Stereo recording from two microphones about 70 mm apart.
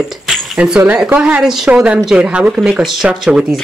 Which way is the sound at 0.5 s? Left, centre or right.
Centre.